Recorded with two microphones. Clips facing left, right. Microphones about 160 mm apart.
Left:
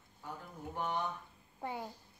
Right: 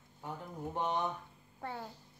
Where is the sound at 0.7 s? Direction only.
20° right (ahead or behind).